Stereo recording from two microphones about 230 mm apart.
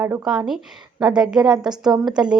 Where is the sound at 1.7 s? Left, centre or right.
Centre.